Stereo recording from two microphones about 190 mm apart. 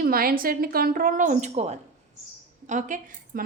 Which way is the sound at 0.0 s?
50° right (ahead or behind).